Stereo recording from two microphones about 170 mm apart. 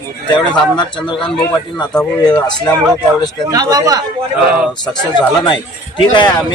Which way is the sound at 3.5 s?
20° right (ahead or behind).